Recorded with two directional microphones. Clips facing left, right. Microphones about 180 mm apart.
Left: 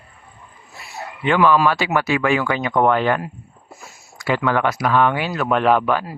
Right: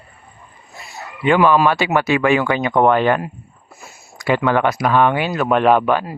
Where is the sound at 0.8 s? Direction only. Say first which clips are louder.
Right 4 dB; 10° right (ahead or behind).